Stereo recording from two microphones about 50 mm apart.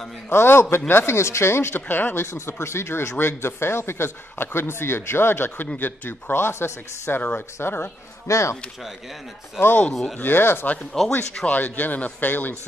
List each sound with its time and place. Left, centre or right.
0.3 s speech: left
2.3 s speech: left
7.2 s speech: left
8.3 s speech: left
10.2 s speech: left
10.9 s speech: centre
11.4 s speech: left